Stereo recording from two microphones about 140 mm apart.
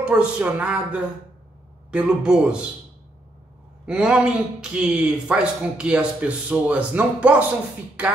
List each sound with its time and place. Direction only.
0.0 s a man's voice: 10° right (ahead or behind)
3.8 s a man's voice: 5° right (ahead or behind)